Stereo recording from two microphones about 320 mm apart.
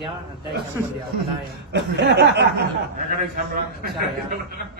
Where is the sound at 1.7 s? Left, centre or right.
Right.